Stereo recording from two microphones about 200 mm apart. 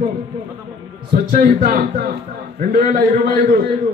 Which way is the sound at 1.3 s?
45° right (ahead or behind).